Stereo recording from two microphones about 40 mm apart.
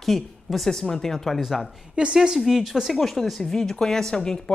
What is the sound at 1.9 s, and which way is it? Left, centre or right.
Speech, right.